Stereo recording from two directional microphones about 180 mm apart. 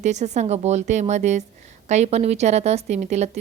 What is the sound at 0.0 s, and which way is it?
A woman's voice, 40° right (ahead or behind).